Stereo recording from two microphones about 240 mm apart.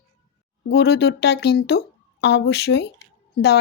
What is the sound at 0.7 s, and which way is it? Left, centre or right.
Speech, left.